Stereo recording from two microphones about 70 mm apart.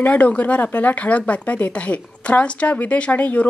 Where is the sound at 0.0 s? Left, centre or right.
Left.